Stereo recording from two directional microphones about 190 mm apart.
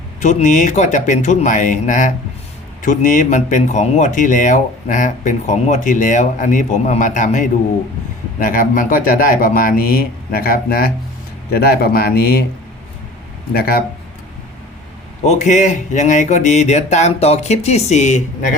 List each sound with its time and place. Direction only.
0.2 s speech: 40° left (ahead or behind)
13.5 s speech: 50° left (ahead or behind)
15.2 s speech: 40° left (ahead or behind)